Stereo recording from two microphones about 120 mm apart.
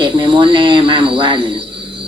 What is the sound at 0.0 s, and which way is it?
Speech, 45° right (ahead or behind).